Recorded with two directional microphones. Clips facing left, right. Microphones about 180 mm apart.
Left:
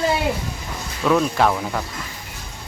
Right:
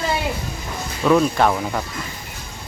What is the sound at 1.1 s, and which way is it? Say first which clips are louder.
Speech: right 2 dB; centre (ahead or behind).